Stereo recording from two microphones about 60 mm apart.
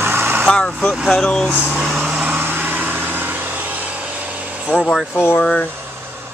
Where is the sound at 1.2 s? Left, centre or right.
Centre.